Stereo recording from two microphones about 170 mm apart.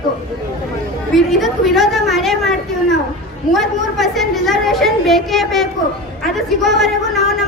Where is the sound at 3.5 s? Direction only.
Centre (ahead or behind).